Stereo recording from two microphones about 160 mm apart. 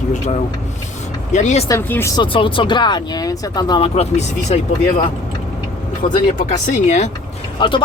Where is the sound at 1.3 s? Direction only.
45° left (ahead or behind).